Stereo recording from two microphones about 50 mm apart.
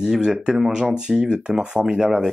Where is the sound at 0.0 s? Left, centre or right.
Centre.